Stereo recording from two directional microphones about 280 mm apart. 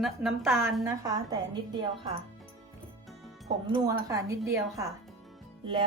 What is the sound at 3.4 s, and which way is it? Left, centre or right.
Speech, centre.